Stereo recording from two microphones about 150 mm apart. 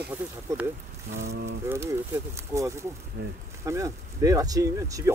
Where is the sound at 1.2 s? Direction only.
90° right.